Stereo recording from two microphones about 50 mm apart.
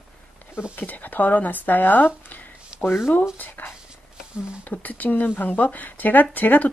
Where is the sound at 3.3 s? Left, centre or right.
Left.